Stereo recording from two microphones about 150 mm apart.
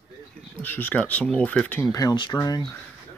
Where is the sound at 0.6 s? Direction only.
10° left (ahead or behind).